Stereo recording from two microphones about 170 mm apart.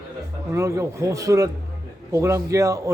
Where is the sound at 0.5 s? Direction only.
15° right (ahead or behind).